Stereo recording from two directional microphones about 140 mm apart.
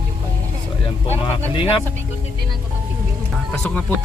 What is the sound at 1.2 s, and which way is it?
Speech, 40° left (ahead or behind).